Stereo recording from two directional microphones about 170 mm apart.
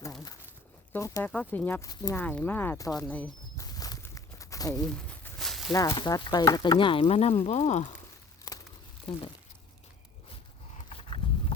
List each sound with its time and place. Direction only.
0.9 s speech: 15° left (ahead or behind)
1.9 s speech: 25° left (ahead or behind)
2.1 s speech: 10° left (ahead or behind)
3.2 s walk: 20° left (ahead or behind)
4.9 s a sound: 5° left (ahead or behind)
5.7 s speech: 20° left (ahead or behind); by 7.9 s 40° left (ahead or behind)
8.5 s crumpling: 25° left (ahead or behind)